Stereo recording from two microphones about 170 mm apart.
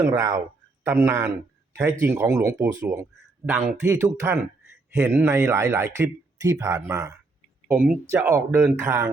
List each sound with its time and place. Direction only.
0.0 s speech: 15° right (ahead or behind)